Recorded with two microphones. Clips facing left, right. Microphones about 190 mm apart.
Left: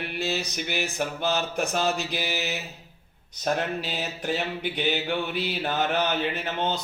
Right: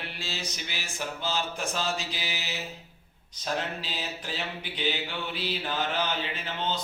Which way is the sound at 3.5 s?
55° left (ahead or behind).